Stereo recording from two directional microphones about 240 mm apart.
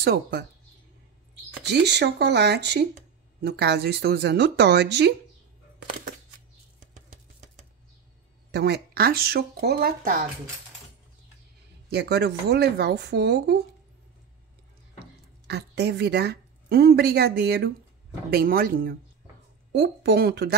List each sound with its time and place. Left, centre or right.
0.0 s speech: right
1.6 s speech: right
6.8 s a sound: right
8.5 s speech: right
11.9 s speech: right
15.4 s a woman's voice: right